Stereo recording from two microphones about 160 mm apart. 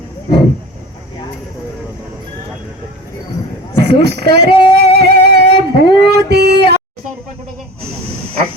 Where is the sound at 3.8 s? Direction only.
90° right.